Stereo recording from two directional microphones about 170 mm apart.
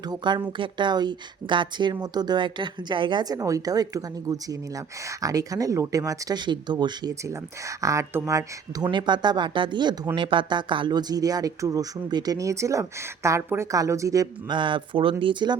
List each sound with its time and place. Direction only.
0.1 s speech: 25° right (ahead or behind)